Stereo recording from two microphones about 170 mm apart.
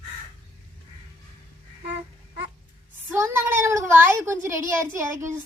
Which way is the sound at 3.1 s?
15° right (ahead or behind).